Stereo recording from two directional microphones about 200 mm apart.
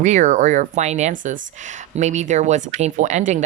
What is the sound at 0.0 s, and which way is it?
A woman's voice, 35° right (ahead or behind).